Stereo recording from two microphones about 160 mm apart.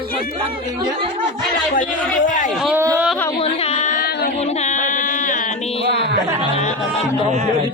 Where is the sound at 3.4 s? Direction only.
40° left (ahead or behind).